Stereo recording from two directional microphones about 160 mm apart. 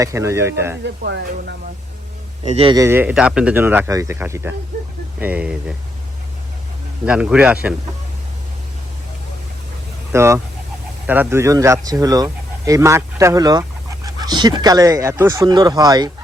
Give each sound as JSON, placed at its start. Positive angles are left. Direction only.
{"t": 0.0, "sound": "speech", "side_deg": -20}
{"t": 1.0, "sound": "speech", "side_deg": -90}
{"t": 2.5, "sound": "a man's voice", "side_deg": -35}
{"t": 2.7, "sound": "speech", "side_deg": -15}
{"t": 7.0, "sound": "speech", "side_deg": -5}
{"t": 10.1, "sound": "speech", "side_deg": -15}